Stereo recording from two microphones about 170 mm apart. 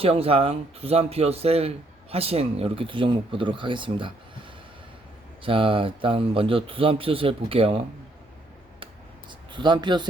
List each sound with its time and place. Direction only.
0.0 s speech: 35° right (ahead or behind)
5.4 s speech: 30° right (ahead or behind)
9.5 s speech: 25° right (ahead or behind)